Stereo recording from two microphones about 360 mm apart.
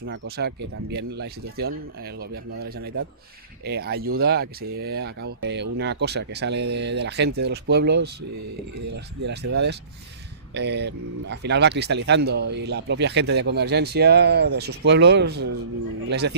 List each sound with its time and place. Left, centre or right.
0.0 s speech: right
9.2 s speech: right